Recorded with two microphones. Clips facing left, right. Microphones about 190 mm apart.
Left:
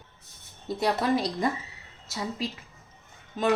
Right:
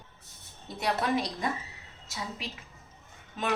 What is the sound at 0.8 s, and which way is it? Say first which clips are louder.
Speech: left 3 dB; 35° left (ahead or behind).